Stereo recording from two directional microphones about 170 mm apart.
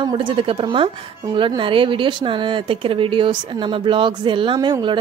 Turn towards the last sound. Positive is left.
turn(degrees=-25)  # may be behind; listen again after turning